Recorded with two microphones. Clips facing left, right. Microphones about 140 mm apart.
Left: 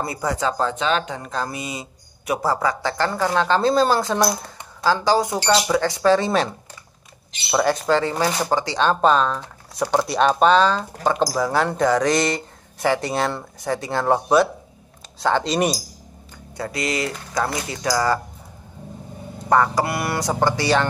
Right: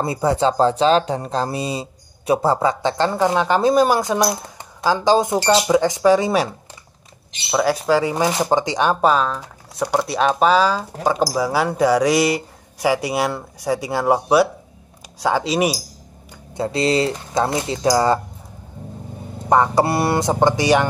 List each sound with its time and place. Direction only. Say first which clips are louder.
0.0 s speech: right 5 dB; 25° right (ahead or behind)
7.5 s speech: right 1 dB; 5° right (ahead or behind)
9.0 s speech: even; 5° right (ahead or behind)
16.5 s speech: right 7 dB; 25° right (ahead or behind)
19.5 s speech: right 3 dB; 25° right (ahead or behind)